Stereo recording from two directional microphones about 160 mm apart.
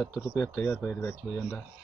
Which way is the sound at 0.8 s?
15° left (ahead or behind).